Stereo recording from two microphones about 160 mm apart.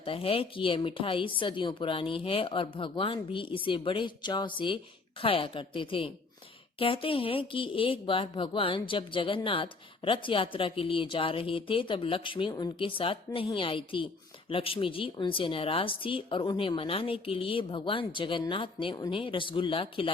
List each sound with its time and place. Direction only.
0.0 s speech: 35° left (ahead or behind)